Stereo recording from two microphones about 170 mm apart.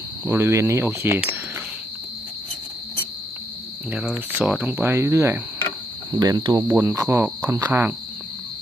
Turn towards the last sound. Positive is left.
turn(degrees=-15)  # may be behind; listen again after turning